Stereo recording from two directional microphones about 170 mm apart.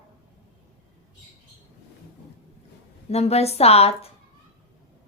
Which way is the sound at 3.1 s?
40° left (ahead or behind).